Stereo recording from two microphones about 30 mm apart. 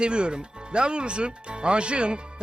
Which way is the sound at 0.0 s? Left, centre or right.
Right.